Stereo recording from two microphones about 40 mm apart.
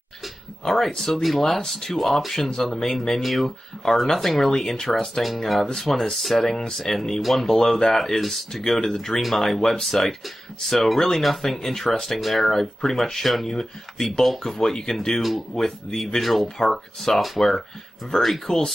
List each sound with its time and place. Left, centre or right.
0.7 s speech: centre
3.0 s speech: centre